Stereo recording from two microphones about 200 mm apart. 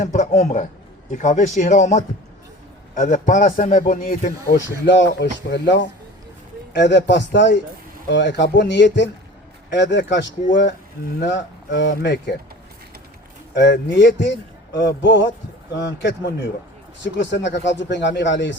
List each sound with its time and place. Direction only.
0.0 s a man's voice: 35° left (ahead or behind)
4.9 s a man's voice: 60° left (ahead or behind)
13.5 s a man's voice: 60° left (ahead or behind)